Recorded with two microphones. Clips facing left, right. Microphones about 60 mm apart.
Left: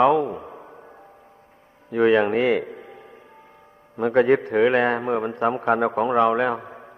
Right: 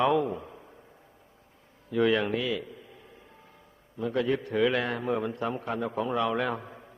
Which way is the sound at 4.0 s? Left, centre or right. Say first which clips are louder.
Left 10 dB; left.